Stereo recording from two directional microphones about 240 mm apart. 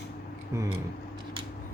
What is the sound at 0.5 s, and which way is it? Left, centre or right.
Speech, centre.